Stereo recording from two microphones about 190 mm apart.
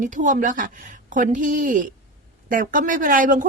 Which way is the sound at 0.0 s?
40° right (ahead or behind).